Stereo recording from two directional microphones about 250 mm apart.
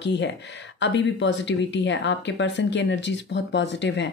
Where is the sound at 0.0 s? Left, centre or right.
Left.